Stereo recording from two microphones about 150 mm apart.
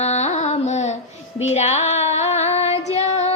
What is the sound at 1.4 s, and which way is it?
Female singing, 45° left (ahead or behind).